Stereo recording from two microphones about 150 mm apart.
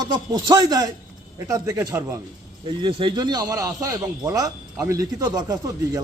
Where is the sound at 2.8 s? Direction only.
35° right (ahead or behind).